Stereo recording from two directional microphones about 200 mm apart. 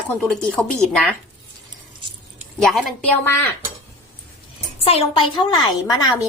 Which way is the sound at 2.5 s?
Centre (ahead or behind).